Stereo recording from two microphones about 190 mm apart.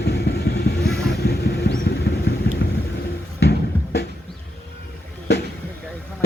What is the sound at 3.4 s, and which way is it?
Music, 60° left (ahead or behind).